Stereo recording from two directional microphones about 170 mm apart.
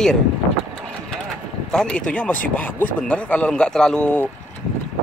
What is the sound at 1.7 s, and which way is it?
Speech, 5° left (ahead or behind).